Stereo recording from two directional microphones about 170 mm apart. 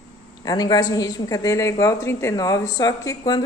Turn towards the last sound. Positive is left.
turn(degrees=20)  # may be behind; listen again after turning